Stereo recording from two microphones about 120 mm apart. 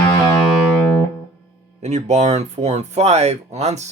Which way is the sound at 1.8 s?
65° right (ahead or behind).